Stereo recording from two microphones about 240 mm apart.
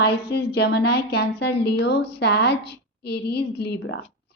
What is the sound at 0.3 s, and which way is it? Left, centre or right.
A woman's voice, left.